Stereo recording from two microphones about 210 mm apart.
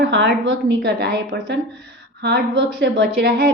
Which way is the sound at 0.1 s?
60° right (ahead or behind).